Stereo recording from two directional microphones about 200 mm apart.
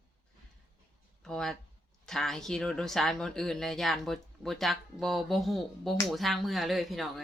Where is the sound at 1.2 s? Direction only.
5° left (ahead or behind).